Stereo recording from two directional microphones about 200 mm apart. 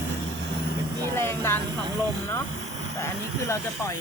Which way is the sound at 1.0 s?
10° left (ahead or behind).